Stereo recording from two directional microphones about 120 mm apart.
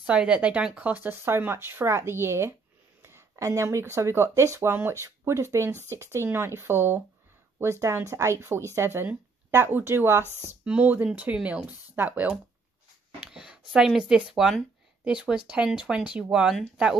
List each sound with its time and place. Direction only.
0.0 s speech: 10° right (ahead or behind)
10.2 s speech: 20° left (ahead or behind)
10.5 s speech: 10° right (ahead or behind)